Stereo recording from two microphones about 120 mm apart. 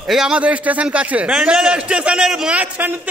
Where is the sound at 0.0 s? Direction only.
5° right (ahead or behind).